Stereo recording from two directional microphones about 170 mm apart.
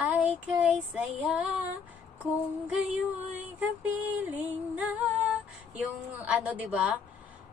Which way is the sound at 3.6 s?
10° right (ahead or behind).